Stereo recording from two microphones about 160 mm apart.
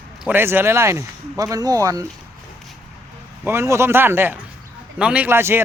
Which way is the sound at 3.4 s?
15° right (ahead or behind).